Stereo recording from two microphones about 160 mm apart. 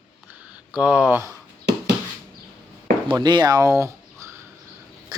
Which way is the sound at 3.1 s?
25° right (ahead or behind).